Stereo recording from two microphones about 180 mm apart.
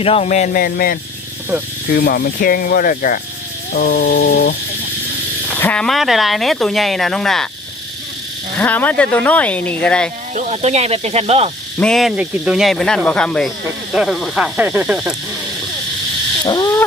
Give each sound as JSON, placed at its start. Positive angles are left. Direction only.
{"t": 0.0, "sound": "speech", "side_deg": 35}
{"t": 3.7, "sound": "wild animals", "side_deg": 55}
{"t": 5.5, "sound": "speech", "side_deg": 10}
{"t": 8.5, "sound": "speech", "side_deg": 10}
{"t": 10.3, "sound": "speech", "side_deg": -35}
{"t": 11.8, "sound": "speech", "side_deg": 5}